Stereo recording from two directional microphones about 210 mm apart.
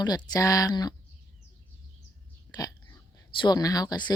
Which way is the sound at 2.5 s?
20° left (ahead or behind).